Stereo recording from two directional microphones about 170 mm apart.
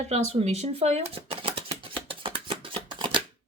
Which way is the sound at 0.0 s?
40° right (ahead or behind).